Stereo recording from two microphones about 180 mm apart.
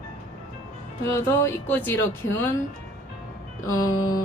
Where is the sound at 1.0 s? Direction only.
15° left (ahead or behind).